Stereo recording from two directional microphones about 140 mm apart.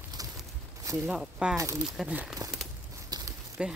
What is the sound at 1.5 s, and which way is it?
Speech, 25° right (ahead or behind).